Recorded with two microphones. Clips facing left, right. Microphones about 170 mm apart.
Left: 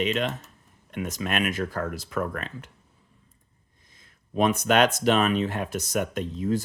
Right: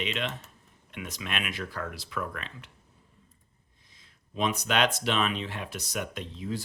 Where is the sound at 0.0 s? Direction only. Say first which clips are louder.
Left 7 dB; 45° left (ahead or behind).